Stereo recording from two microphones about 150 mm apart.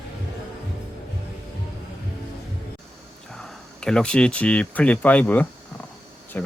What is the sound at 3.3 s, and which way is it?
Speech, 5° left (ahead or behind).